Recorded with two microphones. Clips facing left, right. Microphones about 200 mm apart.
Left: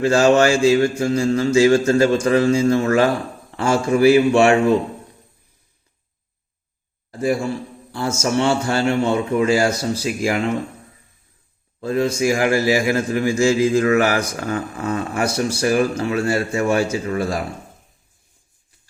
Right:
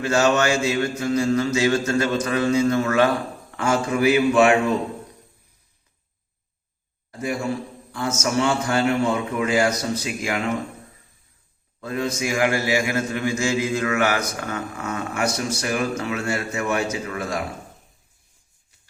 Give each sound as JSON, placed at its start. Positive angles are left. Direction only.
{"t": 0.0, "sound": "a man's voice", "side_deg": 30}
{"t": 7.9, "sound": "a man's voice", "side_deg": 30}
{"t": 11.8, "sound": "a man's voice", "side_deg": 30}